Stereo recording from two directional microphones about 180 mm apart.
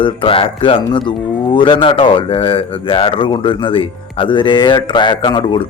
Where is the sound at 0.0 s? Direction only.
30° left (ahead or behind).